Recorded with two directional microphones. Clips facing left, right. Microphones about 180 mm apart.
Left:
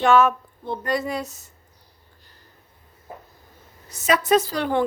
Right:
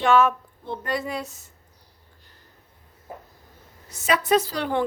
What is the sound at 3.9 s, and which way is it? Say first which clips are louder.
Speech: left 2 dB; 40° left (ahead or behind).